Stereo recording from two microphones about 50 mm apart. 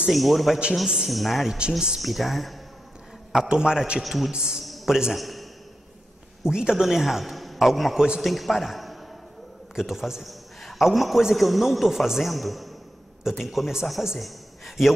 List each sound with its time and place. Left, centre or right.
0.1 s a man's voice: centre
0.8 s a man's voice: centre
1.1 s a man's voice: centre
1.7 s a man's voice: centre
2.0 s a man's voice: centre
3.4 s a man's voice: centre
4.0 s a man's voice: centre
4.3 s a man's voice: centre
4.6 s a sound: centre
5.1 s a man's voice: centre
6.4 s a man's voice: centre